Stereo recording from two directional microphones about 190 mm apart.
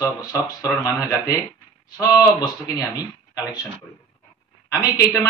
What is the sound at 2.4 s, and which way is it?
Speech, 20° left (ahead or behind).